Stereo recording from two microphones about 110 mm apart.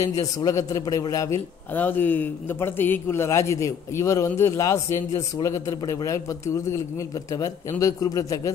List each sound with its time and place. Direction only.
0.0 s a man's voice: 30° left (ahead or behind)
1.7 s a man's voice: 15° left (ahead or behind)